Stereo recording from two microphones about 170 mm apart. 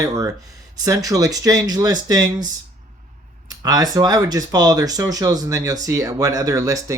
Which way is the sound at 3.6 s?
20° right (ahead or behind).